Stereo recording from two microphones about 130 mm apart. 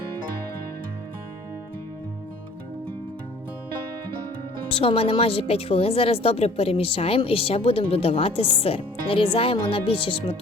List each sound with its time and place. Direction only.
4.7 s speech: 45° left (ahead or behind)